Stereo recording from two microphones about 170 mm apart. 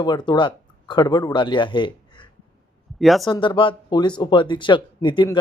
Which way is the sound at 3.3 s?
30° left (ahead or behind).